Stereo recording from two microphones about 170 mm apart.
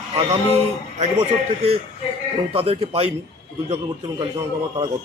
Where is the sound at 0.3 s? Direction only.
40° right (ahead or behind).